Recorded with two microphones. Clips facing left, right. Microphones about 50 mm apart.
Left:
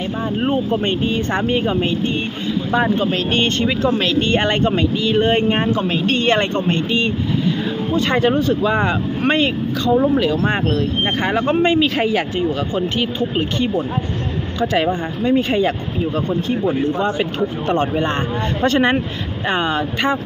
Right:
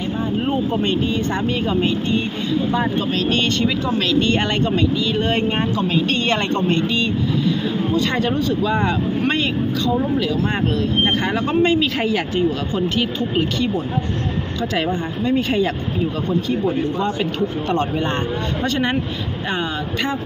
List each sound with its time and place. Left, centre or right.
0.3 s speech: left
15.2 s speech: left
17.7 s speech: left